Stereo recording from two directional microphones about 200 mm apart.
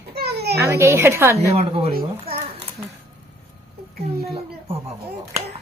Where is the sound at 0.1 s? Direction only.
55° right (ahead or behind).